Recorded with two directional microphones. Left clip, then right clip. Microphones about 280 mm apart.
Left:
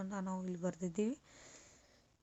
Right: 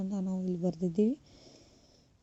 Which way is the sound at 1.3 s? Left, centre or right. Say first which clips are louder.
Right 2 dB; centre.